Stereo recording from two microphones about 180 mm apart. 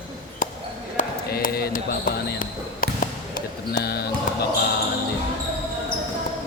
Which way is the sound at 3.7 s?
60° left (ahead or behind).